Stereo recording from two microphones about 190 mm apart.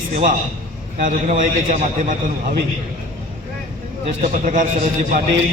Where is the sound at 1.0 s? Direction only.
40° right (ahead or behind).